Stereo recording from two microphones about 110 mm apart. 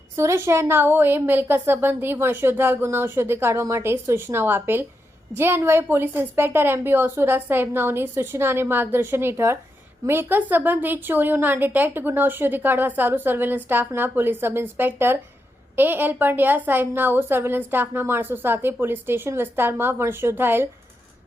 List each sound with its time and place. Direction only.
0.2 s a woman's voice: 25° right (ahead or behind)